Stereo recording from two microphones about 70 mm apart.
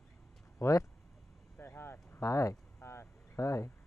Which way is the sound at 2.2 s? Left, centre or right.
Left.